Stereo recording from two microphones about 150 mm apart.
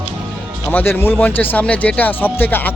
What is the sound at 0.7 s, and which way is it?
Speech, 10° left (ahead or behind).